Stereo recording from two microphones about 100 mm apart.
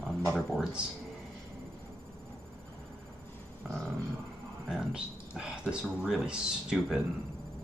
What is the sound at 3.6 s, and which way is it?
Music, 5° left (ahead or behind).